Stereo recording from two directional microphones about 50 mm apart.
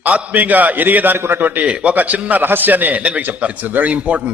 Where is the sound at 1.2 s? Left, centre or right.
Right.